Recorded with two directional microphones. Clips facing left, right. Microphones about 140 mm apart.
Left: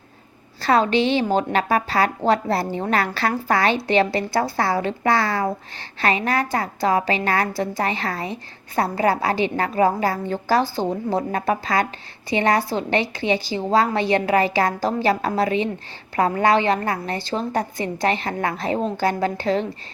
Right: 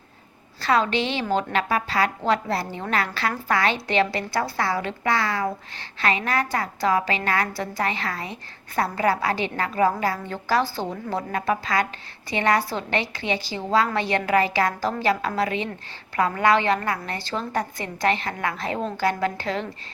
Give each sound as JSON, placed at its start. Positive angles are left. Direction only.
{"t": 0.6, "sound": "a woman's voice", "side_deg": 35}